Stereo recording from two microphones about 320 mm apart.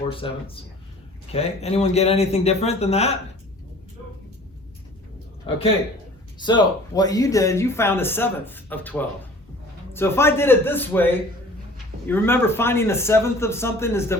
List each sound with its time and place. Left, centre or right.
0.1 s a man's voice: centre
6.4 s speech: centre